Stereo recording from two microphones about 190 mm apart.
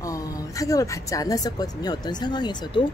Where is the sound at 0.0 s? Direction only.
15° left (ahead or behind).